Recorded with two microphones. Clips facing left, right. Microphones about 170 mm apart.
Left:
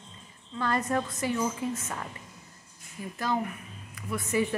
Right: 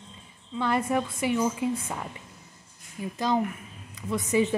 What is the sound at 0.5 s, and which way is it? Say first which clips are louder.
A woman's voice: right 3 dB; 15° right (ahead or behind).